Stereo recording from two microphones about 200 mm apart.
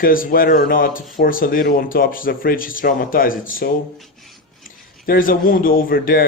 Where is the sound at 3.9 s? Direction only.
Centre (ahead or behind).